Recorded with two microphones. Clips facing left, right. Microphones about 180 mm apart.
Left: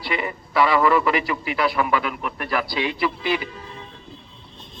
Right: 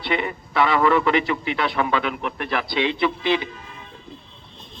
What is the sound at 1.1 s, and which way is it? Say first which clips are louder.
A man's voice: right 2 dB; 25° right (ahead or behind).